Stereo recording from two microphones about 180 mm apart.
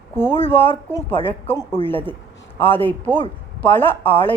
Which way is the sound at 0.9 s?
10° left (ahead or behind).